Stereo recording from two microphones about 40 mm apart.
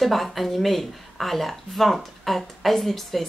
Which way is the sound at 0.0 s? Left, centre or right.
Centre.